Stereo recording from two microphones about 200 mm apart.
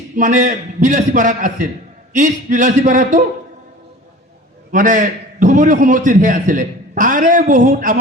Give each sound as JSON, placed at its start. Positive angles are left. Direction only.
{"t": 0.2, "sound": "a man's voice", "side_deg": -40}
{"t": 4.7, "sound": "a man's voice", "side_deg": -40}